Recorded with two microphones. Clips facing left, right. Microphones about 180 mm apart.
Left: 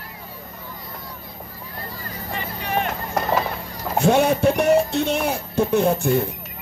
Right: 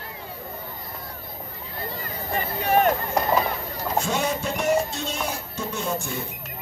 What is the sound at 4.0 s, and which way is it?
Music, 60° left (ahead or behind).